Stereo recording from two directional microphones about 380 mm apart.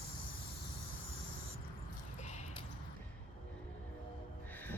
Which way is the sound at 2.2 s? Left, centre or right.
Centre.